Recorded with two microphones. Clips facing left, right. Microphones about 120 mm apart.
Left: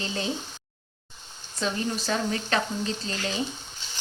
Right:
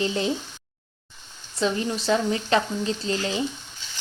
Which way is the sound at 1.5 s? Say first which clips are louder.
Right 4 dB; 25° right (ahead or behind).